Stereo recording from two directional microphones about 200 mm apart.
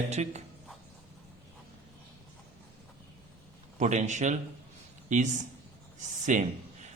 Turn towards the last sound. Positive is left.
turn(degrees=-35)  # may be behind; listen again after turning